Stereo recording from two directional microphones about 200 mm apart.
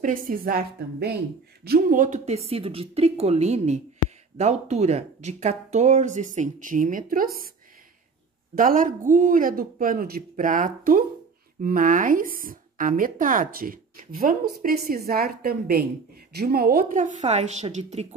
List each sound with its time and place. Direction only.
0.0 s a woman's voice: 45° right (ahead or behind)
8.5 s a woman's voice: 45° right (ahead or behind)